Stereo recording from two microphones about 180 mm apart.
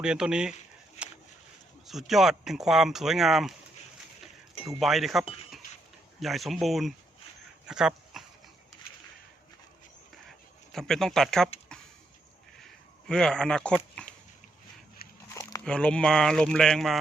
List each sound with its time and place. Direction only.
0.0 s speech: 5° right (ahead or behind)
1.0 s a sound: 40° left (ahead or behind)
1.9 s speech: centre (ahead or behind)
4.8 s speech: centre (ahead or behind)
10.7 s speech: centre (ahead or behind)
11.7 s a sound: 5° left (ahead or behind)
13.1 s speech: 5° left (ahead or behind)
15.6 s speech: 5° left (ahead or behind)